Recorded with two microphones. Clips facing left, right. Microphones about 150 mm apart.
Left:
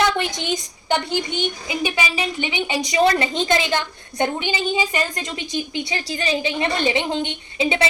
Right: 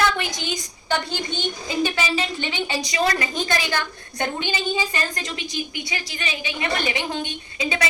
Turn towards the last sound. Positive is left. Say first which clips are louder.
# left 5 dB
turn(degrees=25)  # may be behind; listen again after turning